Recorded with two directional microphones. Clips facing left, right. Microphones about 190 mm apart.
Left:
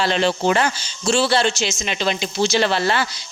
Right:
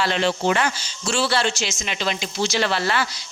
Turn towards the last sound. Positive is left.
turn(degrees=25)  # may be behind; listen again after turning